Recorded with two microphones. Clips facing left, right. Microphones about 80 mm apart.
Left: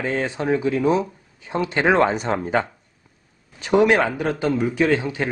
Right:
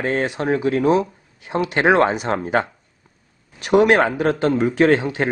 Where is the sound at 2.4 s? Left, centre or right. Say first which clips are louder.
Right 2 dB; right.